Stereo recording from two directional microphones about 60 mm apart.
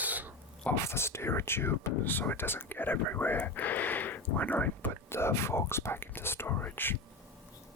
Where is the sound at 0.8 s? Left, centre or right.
Left.